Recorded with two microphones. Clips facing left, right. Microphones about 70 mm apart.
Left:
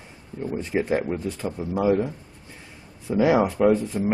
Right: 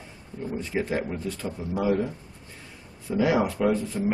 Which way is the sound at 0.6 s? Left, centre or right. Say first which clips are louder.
Left 4 dB; left.